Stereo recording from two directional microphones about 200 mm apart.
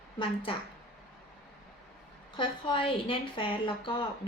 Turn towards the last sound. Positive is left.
turn(degrees=25)  # may be behind; listen again after turning